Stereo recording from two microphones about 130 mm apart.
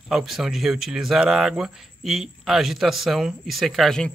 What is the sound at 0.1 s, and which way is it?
Speech, 5° right (ahead or behind).